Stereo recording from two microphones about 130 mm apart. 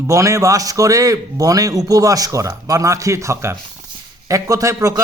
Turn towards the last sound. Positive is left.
turn(degrees=-25)  # may be behind; listen again after turning